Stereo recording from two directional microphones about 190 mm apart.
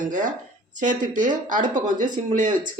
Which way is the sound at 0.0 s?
40° right (ahead or behind).